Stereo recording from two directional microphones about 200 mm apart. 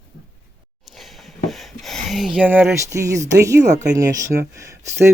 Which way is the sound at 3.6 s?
35° right (ahead or behind).